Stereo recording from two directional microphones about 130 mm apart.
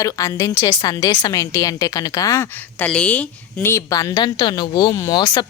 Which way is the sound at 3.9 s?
25° left (ahead or behind).